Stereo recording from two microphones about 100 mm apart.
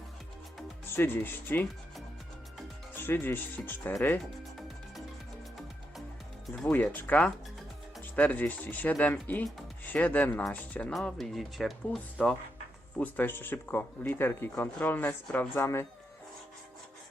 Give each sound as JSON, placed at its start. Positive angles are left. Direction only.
{"t": 0.9, "sound": "speech", "side_deg": 20}
{"t": 2.9, "sound": "speech", "side_deg": 20}
{"t": 6.7, "sound": "speech", "side_deg": 15}
{"t": 11.0, "sound": "speech", "side_deg": 0}
{"t": 13.0, "sound": "speech", "side_deg": 20}